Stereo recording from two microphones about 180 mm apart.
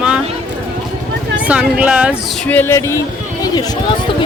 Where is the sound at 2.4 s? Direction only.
10° left (ahead or behind).